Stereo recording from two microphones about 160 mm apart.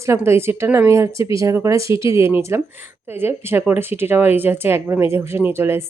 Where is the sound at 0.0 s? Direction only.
15° right (ahead or behind).